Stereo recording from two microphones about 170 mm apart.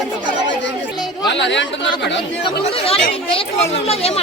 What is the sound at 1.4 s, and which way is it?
Speech, 90° left.